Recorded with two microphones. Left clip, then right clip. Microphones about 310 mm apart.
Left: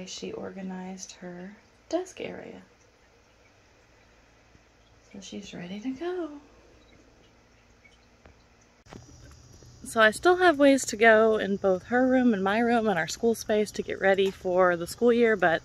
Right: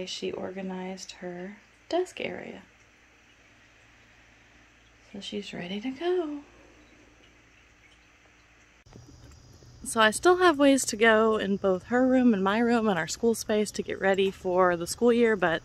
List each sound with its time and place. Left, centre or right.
0.2 s speech: centre
5.3 s speech: centre
9.8 s speech: centre